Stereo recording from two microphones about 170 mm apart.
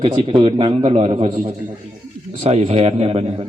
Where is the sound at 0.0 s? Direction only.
30° right (ahead or behind).